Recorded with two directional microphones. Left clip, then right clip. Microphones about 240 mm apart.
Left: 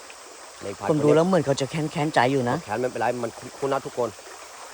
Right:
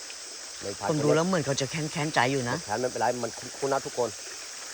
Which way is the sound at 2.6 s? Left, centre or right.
Left.